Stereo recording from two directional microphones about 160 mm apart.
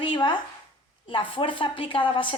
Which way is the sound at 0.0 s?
30° left (ahead or behind).